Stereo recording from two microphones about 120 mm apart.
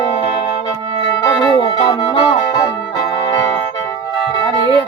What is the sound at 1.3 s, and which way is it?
Music, 40° left (ahead or behind).